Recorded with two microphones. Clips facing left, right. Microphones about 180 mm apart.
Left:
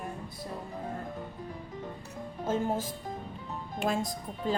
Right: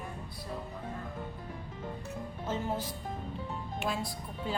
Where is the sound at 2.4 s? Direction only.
50° left (ahead or behind).